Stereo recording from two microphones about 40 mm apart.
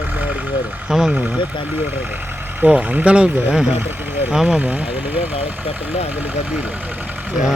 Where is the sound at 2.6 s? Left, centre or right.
Right.